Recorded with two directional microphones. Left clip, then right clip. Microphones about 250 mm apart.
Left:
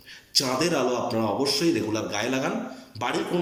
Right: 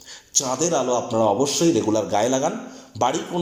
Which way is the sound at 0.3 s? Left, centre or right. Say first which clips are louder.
Right 2 dB; centre.